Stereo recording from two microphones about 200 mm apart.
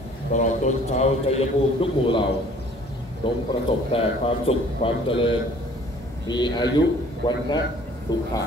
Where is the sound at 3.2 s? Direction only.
25° left (ahead or behind).